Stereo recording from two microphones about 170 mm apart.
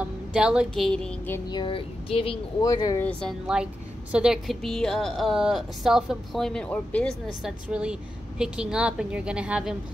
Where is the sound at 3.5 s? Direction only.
5° right (ahead or behind).